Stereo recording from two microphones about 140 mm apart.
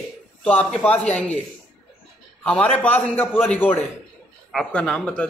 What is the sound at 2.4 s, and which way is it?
A man's voice, 10° left (ahead or behind).